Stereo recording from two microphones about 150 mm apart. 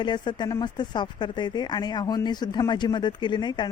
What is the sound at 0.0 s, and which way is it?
Speech, 30° left (ahead or behind).